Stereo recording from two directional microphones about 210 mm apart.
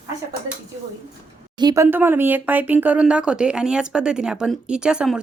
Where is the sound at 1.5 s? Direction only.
15° right (ahead or behind).